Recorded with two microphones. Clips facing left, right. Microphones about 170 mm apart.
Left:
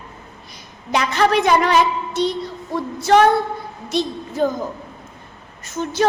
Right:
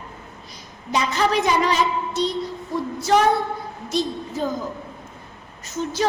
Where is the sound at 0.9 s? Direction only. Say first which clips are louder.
Left 3 dB; 65° left (ahead or behind).